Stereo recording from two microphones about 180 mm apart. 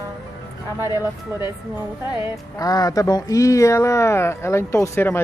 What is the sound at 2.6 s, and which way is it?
A man's voice, 20° left (ahead or behind).